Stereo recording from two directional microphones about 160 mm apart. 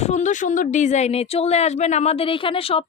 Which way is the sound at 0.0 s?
45° left (ahead or behind).